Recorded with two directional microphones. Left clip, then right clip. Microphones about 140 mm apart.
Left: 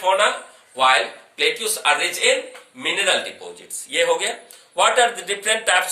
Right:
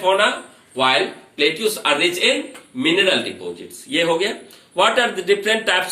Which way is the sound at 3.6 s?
15° left (ahead or behind).